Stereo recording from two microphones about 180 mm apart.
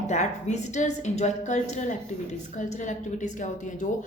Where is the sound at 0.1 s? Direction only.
40° left (ahead or behind).